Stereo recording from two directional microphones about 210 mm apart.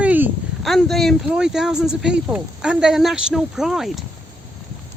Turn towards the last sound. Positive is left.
turn(degrees=0)  # may be behind; listen again after turning